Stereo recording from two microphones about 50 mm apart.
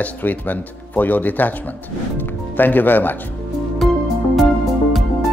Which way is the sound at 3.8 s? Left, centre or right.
Centre.